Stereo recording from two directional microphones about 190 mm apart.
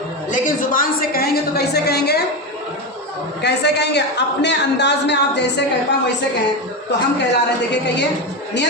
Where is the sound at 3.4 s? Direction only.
65° left (ahead or behind).